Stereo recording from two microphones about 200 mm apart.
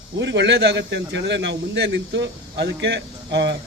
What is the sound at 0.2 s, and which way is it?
A man's voice, 60° right (ahead or behind).